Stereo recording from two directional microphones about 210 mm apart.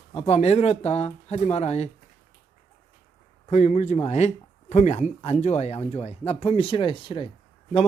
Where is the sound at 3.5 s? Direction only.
35° left (ahead or behind).